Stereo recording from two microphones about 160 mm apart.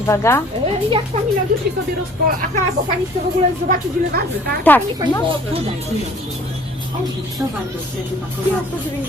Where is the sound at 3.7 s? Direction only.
75° right (ahead or behind).